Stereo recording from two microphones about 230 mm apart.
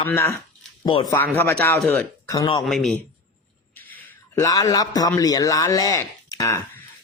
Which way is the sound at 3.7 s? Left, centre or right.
Centre.